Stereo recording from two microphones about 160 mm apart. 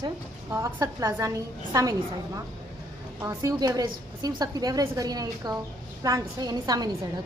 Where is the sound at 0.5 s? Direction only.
20° right (ahead or behind).